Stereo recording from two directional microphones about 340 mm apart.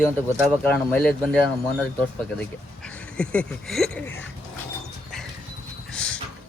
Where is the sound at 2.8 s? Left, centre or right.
Centre.